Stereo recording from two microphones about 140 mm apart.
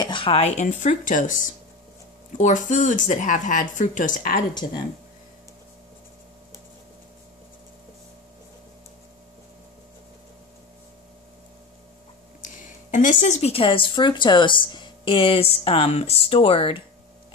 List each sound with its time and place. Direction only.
0.0 s a woman's voice: 40° left (ahead or behind); by 4.4 s 70° left (ahead or behind)
12.9 s speech: 65° left (ahead or behind); by 16.8 s 40° left (ahead or behind)